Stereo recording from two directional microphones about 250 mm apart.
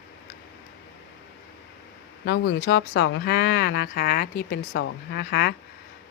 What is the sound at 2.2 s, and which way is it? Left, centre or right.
Speech, left.